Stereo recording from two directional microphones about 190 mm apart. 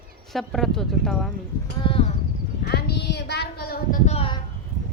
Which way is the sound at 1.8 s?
30° left (ahead or behind).